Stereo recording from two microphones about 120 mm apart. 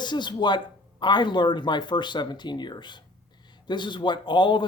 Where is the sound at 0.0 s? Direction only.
40° left (ahead or behind).